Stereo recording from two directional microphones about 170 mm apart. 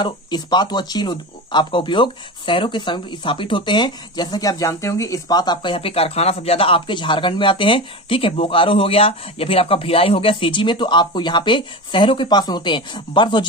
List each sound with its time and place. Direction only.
0.0 s speech: 25° left (ahead or behind)